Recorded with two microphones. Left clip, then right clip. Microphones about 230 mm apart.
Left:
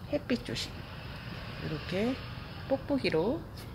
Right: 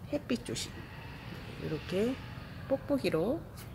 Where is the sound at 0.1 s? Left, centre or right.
Centre.